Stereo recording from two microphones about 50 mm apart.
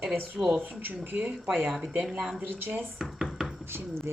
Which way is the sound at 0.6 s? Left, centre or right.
Right.